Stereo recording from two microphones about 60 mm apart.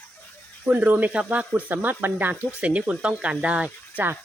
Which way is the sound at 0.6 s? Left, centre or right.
Right.